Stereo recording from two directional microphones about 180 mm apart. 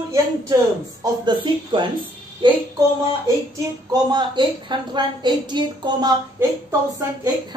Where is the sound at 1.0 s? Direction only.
25° right (ahead or behind).